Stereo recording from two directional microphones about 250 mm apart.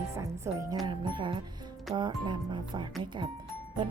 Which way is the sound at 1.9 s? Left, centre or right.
Centre.